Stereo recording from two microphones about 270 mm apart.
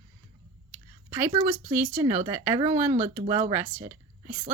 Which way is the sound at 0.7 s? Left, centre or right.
Centre.